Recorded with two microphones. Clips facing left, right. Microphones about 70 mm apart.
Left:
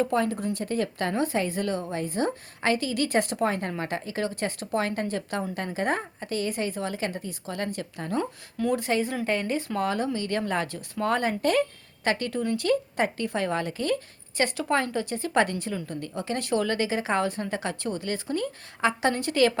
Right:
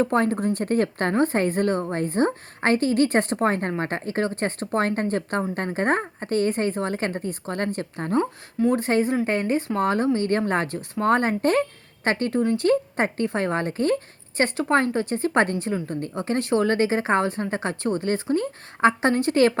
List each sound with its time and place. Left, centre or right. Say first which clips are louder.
0.0 s speech: right 4 dB; right